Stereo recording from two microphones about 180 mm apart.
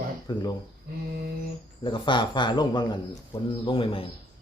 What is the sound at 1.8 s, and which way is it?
A man's voice, 25° left (ahead or behind).